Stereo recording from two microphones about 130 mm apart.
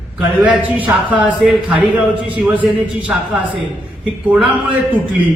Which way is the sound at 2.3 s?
10° right (ahead or behind).